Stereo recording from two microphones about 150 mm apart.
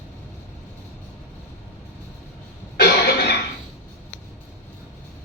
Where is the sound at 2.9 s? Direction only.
90° left.